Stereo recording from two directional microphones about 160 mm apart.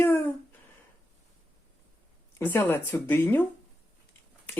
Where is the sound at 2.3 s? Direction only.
10° left (ahead or behind).